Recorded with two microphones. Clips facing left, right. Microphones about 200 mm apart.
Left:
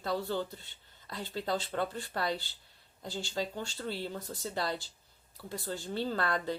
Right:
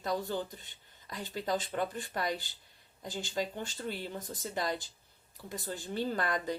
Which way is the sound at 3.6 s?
15° right (ahead or behind).